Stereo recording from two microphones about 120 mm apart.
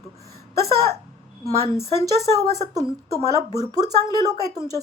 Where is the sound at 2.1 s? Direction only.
30° right (ahead or behind).